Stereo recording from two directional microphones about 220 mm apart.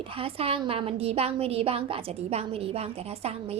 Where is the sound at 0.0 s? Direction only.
25° right (ahead or behind).